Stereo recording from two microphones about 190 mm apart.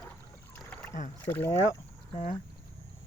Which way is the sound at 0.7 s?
5° left (ahead or behind).